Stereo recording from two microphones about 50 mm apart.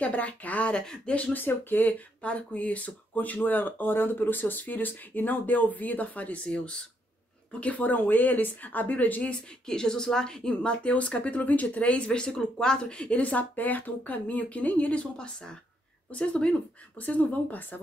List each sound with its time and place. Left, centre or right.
0.0 s a woman's voice: left
1.3 s speech: left
2.2 s speech: left
7.6 s speech: left
9.7 s a woman's voice: centre; by 15.0 s left
15.1 s a woman's voice: centre
17.0 s speech: left